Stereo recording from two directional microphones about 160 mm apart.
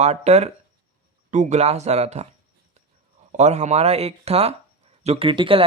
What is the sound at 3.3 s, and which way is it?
Speech, 45° right (ahead or behind).